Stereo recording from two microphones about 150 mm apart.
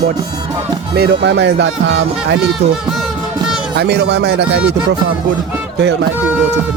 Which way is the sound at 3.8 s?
90° right.